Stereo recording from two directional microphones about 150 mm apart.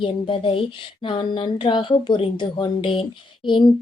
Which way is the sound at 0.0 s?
35° left (ahead or behind).